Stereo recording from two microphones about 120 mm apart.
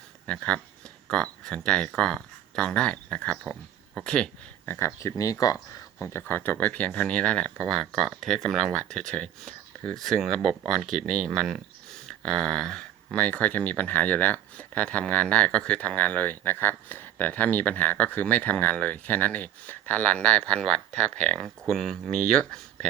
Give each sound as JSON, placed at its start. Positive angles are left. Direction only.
{"t": 0.3, "sound": "speech", "side_deg": 10}